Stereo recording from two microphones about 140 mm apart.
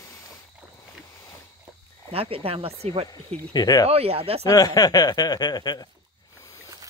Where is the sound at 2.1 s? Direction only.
45° right (ahead or behind).